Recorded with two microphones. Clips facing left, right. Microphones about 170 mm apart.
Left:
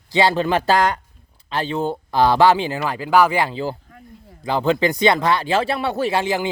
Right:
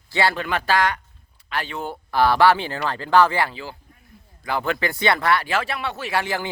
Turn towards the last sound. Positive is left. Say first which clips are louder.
# left 4 dB
turn(degrees=20)  # may be behind; listen again after turning